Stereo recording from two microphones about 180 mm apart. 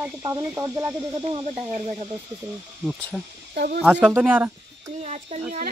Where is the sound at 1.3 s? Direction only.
40° right (ahead or behind).